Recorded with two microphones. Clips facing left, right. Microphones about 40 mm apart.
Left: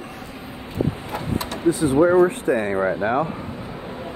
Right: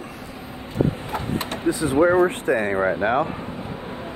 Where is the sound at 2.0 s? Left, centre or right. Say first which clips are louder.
Even; right.